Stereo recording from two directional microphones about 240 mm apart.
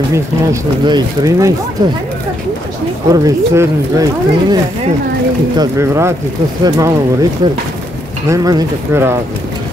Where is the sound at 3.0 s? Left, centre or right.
Centre.